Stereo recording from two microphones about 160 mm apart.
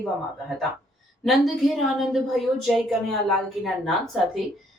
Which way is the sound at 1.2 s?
Centre (ahead or behind).